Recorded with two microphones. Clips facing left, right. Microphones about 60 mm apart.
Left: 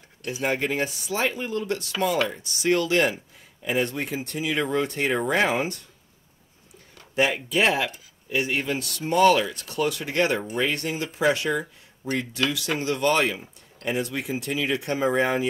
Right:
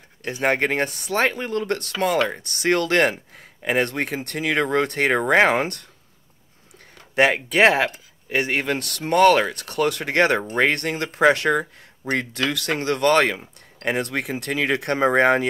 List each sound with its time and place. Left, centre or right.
0.2 s speech: right
7.2 s speech: right